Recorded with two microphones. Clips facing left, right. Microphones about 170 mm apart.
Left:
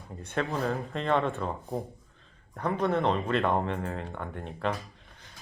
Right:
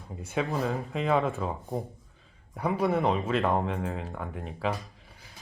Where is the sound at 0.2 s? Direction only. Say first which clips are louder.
Right 1 dB; 5° right (ahead or behind).